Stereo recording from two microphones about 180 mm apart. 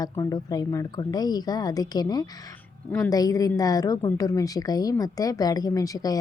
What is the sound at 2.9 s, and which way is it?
Speech, 10° left (ahead or behind).